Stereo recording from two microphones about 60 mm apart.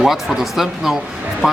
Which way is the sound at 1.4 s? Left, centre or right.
Centre.